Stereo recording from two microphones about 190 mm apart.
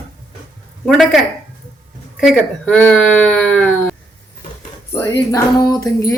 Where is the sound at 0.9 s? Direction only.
Centre (ahead or behind).